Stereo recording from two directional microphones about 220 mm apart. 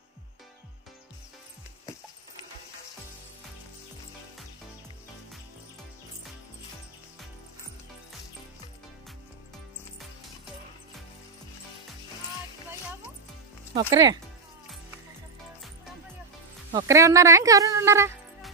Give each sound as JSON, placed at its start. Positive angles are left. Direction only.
{"t": 13.7, "sound": "speech", "side_deg": -20}
{"t": 16.7, "sound": "speech", "side_deg": -15}